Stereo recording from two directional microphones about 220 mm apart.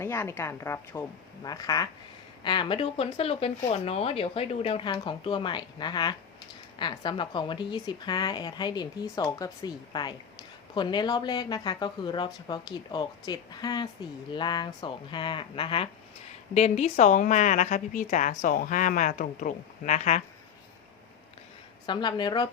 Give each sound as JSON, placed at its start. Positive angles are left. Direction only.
{"t": 0.0, "sound": "a woman's voice", "side_deg": 10}
{"t": 21.8, "sound": "speech", "side_deg": 20}